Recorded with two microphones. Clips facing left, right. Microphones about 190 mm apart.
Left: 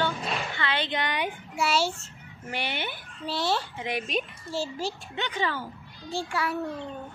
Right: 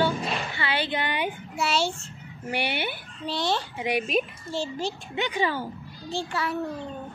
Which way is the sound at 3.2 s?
5° left (ahead or behind).